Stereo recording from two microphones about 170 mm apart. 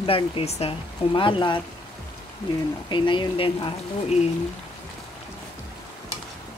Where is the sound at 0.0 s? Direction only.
30° left (ahead or behind).